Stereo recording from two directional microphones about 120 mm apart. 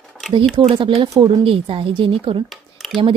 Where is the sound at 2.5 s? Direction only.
Centre (ahead or behind).